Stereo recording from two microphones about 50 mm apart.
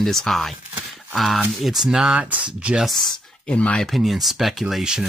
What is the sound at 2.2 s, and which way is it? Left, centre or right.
Speech, right.